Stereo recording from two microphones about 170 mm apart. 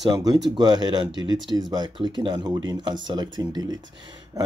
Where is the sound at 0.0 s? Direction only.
25° right (ahead or behind).